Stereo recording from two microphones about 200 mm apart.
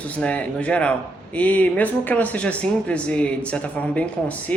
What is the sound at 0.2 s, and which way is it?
Speech, 5° left (ahead or behind).